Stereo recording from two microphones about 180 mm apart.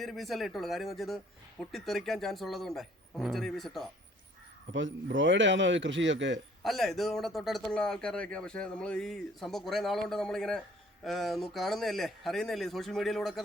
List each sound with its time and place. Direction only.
0.0 s speech: centre (ahead or behind)
4.7 s speech: 90° right
6.7 s speech: centre (ahead or behind)